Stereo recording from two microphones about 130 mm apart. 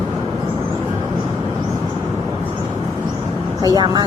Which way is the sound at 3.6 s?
30° right (ahead or behind).